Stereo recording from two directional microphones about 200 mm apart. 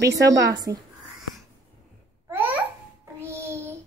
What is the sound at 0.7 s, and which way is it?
Speech, 15° right (ahead or behind).